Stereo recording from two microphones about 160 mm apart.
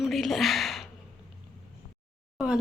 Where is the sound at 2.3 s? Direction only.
5° right (ahead or behind).